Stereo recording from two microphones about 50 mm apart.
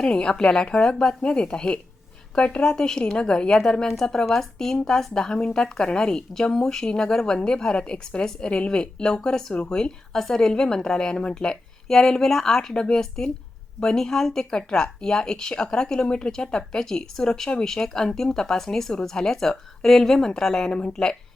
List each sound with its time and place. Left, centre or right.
0.0 s speech: centre